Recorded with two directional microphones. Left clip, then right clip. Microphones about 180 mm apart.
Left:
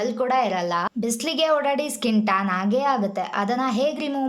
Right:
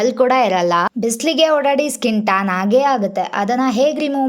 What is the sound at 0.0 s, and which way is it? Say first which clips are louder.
A woman's voice: right 8 dB; 40° right (ahead or behind).